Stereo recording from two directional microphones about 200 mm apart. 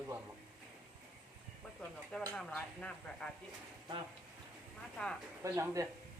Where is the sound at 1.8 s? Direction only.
Centre (ahead or behind).